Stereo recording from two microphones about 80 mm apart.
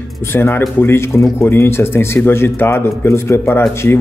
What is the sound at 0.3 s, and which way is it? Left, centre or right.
A man's voice, left.